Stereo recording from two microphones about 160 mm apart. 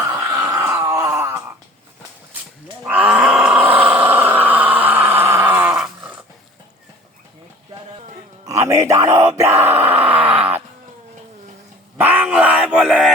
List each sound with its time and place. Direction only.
0.0 s groan: 20° right (ahead or behind)
2.8 s groan: 10° right (ahead or behind)
8.4 s groan: 20° right (ahead or behind)
11.9 s a sound: 10° right (ahead or behind)